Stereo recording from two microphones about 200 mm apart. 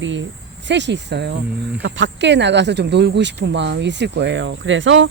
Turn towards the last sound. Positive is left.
turn(degrees=-70)  # may be behind; listen again after turning